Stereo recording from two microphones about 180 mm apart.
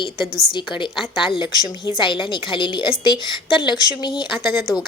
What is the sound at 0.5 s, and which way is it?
Speech, 25° left (ahead or behind).